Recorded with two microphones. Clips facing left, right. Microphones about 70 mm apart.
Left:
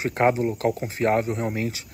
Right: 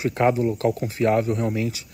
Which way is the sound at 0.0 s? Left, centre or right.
Left.